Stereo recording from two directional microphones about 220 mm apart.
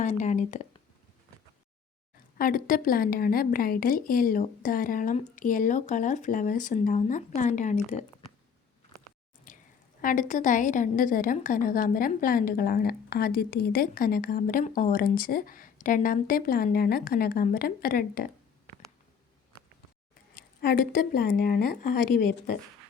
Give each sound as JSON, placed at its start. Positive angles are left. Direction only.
{"t": 0.0, "sound": "speech", "side_deg": 35}
{"t": 2.4, "sound": "a woman's voice", "side_deg": 40}
{"t": 9.5, "sound": "a sound", "side_deg": 35}
{"t": 10.0, "sound": "a woman's voice", "side_deg": 40}
{"t": 20.6, "sound": "speech", "side_deg": 45}